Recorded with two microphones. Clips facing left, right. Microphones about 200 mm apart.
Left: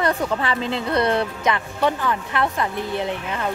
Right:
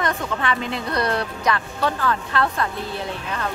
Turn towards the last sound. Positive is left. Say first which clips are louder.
# left 3 dB
turn(degrees=20)  # may be behind; listen again after turning